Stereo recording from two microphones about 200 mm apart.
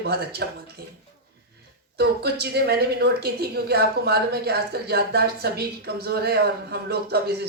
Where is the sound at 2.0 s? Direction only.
55° right (ahead or behind).